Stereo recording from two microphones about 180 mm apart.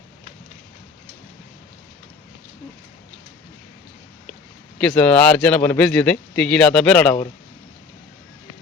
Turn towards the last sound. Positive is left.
turn(degrees=10)  # may be behind; listen again after turning